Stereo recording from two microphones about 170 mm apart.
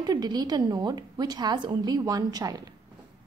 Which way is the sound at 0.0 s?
25° right (ahead or behind).